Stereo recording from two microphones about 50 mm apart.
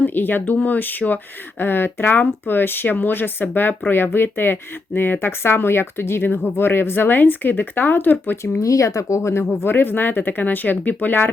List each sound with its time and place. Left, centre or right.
0.0 s speech: left
8.5 s speech: left
9.6 s speech: left